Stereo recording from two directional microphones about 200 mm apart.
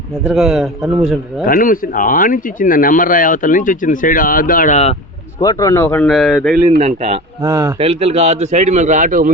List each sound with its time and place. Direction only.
0.3 s speech: centre (ahead or behind)
1.5 s speech: 45° left (ahead or behind)
5.4 s speech: 15° left (ahead or behind)
6.7 s a man's voice: 30° right (ahead or behind)
7.4 s speech: 15° right (ahead or behind)
7.8 s a man's voice: 30° right (ahead or behind)